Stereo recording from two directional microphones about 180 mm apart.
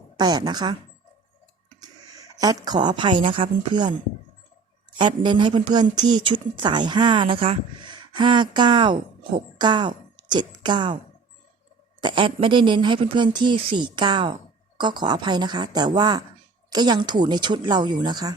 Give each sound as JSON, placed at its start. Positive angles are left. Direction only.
{"t": 0.2, "sound": "speech", "side_deg": -25}
{"t": 1.8, "sound": "speech", "side_deg": -20}
{"t": 4.9, "sound": "speech", "side_deg": -25}
{"t": 11.9, "sound": "speech", "side_deg": -25}